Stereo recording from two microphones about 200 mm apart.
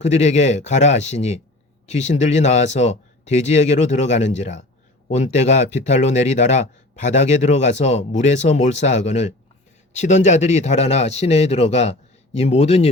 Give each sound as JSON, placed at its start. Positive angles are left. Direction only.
{"t": 0.0, "sound": "speech", "side_deg": 35}